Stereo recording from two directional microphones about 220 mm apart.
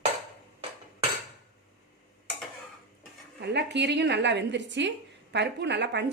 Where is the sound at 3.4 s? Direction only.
50° right (ahead or behind).